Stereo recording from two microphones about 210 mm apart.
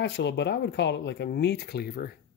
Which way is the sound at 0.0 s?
55° left (ahead or behind).